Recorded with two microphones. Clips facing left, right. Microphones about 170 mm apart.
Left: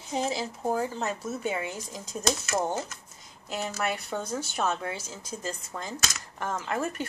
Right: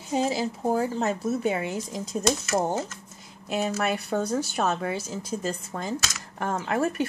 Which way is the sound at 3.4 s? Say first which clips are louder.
Right 5 dB; 15° right (ahead or behind).